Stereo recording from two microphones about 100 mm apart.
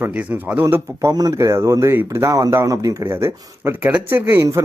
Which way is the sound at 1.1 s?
40° right (ahead or behind).